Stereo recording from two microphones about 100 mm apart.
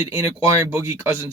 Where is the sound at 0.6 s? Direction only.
25° right (ahead or behind).